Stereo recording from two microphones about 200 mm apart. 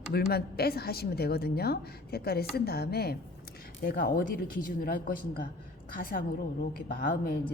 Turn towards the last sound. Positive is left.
turn(degrees=45)  # may be behind; listen again after turning